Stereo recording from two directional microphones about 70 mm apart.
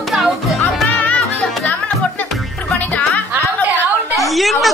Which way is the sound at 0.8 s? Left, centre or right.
Left.